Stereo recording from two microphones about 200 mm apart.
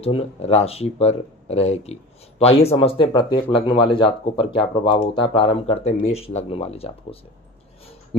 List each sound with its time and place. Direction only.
0.0 s speech: 30° left (ahead or behind)